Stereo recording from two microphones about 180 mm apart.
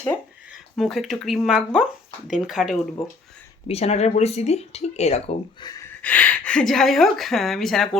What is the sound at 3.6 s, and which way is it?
Speech, 35° left (ahead or behind).